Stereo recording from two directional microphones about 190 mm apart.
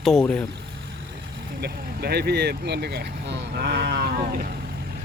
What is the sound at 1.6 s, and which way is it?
Speech, 55° right (ahead or behind).